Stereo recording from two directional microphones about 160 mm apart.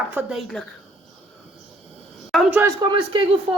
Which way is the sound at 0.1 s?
5° right (ahead or behind).